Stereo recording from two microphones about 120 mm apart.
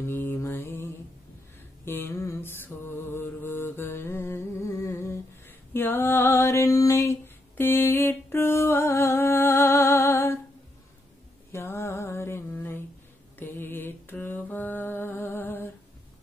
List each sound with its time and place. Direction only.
0.0 s mantra: 20° left (ahead or behind)
1.9 s mantra: 20° left (ahead or behind)
5.7 s female singing: 20° left (ahead or behind)
11.5 s a sound: 20° left (ahead or behind)
13.4 s music: 15° left (ahead or behind)